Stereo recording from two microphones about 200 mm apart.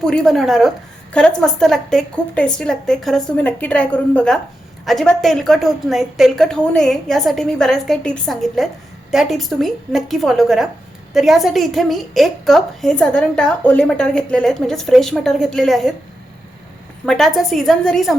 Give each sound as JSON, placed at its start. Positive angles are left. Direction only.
{"t": 0.0, "sound": "a woman's voice", "side_deg": 5}
{"t": 17.1, "sound": "a woman's voice", "side_deg": 0}